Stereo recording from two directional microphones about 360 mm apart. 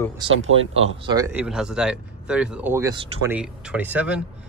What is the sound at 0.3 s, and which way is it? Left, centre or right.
Speech, right.